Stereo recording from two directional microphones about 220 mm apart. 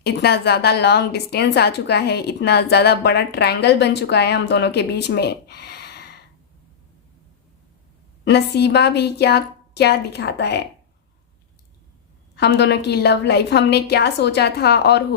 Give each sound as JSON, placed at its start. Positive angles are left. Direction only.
{"t": 0.0, "sound": "a woman's voice", "side_deg": 50}
{"t": 8.2, "sound": "a woman's voice", "side_deg": 50}
{"t": 12.4, "sound": "a woman's voice", "side_deg": 50}